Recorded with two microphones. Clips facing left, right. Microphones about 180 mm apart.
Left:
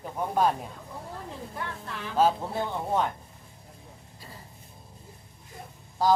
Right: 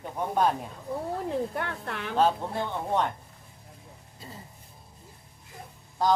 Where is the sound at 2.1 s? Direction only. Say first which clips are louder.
Left 1 dB; 5° left (ahead or behind).